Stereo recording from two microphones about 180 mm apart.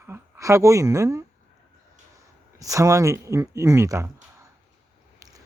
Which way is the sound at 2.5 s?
20° right (ahead or behind).